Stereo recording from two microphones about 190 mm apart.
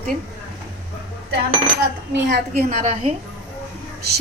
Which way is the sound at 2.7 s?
35° right (ahead or behind).